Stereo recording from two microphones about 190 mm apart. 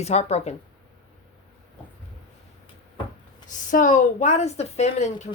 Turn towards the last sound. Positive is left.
turn(degrees=35)  # may be behind; listen again after turning